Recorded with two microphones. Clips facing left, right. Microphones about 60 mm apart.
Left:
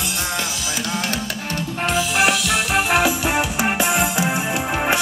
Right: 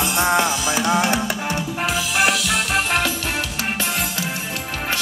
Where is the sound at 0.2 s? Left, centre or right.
Right.